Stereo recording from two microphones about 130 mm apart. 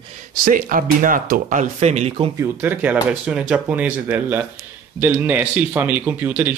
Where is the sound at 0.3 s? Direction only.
90° right; by 2.1 s 55° right (ahead or behind).